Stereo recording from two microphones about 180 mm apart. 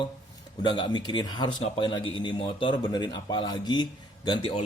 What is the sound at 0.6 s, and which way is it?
Speech, 25° left (ahead or behind).